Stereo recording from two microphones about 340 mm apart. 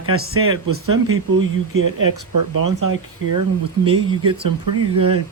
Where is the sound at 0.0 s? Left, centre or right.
Right.